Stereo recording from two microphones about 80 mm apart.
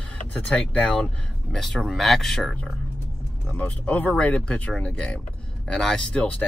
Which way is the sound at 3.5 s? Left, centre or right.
Centre.